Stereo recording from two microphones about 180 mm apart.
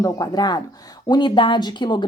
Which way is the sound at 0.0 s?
25° left (ahead or behind).